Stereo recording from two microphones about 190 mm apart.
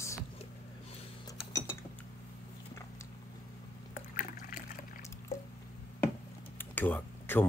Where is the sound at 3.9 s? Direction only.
45° left (ahead or behind).